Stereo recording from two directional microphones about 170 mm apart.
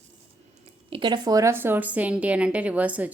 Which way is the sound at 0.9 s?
25° right (ahead or behind).